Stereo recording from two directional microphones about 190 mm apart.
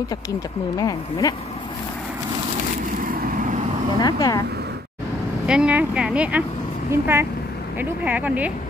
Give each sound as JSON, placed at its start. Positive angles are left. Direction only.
{"t": 0.7, "sound": "speech", "side_deg": 20}
{"t": 3.1, "sound": "vehicle", "side_deg": -45}
{"t": 4.0, "sound": "speech", "side_deg": 20}
{"t": 5.5, "sound": "speech", "side_deg": -5}